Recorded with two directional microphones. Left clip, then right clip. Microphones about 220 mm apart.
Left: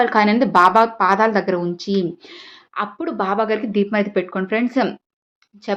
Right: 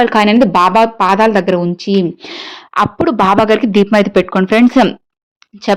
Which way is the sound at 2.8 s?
50° right (ahead or behind).